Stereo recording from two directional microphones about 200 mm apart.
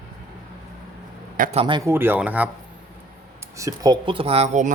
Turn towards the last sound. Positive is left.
turn(degrees=-35)  # may be behind; listen again after turning